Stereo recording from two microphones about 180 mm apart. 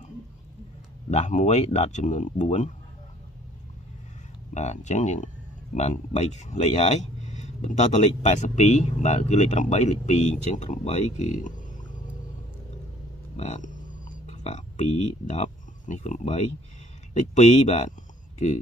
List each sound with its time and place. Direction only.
1.1 s speech: 40° left (ahead or behind)
4.6 s speech: 40° left (ahead or behind)
13.4 s a sound: 40° left (ahead or behind)
17.1 s speech: 40° left (ahead or behind)